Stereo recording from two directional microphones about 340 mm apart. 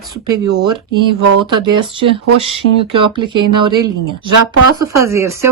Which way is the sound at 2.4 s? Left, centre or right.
Centre.